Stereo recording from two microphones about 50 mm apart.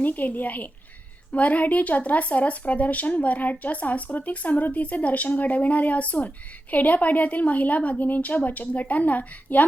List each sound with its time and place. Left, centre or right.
0.0 s speech: left